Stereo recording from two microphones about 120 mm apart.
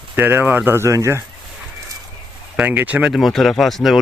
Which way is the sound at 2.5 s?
15° right (ahead or behind).